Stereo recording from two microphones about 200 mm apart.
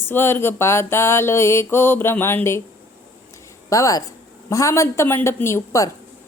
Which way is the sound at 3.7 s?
15° left (ahead or behind).